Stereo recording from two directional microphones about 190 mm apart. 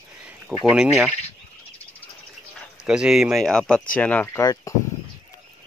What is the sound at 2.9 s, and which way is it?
Speech, 5° right (ahead or behind).